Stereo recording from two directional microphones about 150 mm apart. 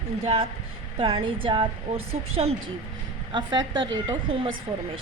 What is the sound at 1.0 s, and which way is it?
A woman's voice, 40° right (ahead or behind).